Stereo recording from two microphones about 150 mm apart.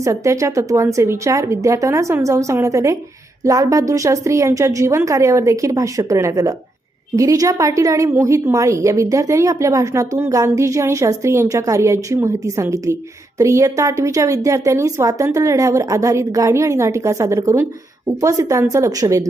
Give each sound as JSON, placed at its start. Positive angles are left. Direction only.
{"t": 0.0, "sound": "a woman's voice", "side_deg": -20}